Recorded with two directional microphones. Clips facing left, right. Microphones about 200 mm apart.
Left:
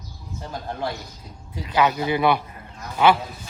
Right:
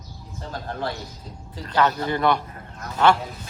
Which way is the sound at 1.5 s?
10° left (ahead or behind).